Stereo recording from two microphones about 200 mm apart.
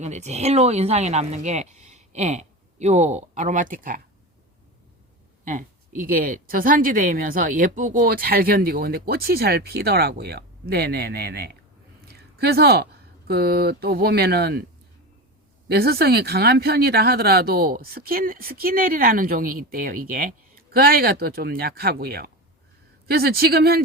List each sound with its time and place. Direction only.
0.0 s a woman's voice: 35° right (ahead or behind)
6.0 s speech: 45° right (ahead or behind)
15.7 s speech: 50° right (ahead or behind)